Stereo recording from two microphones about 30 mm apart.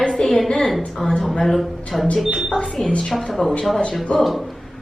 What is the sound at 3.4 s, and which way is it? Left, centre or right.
Speech, left.